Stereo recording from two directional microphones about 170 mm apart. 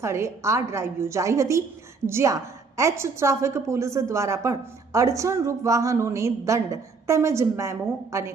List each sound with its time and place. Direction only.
0.0 s a woman's voice: 15° right (ahead or behind)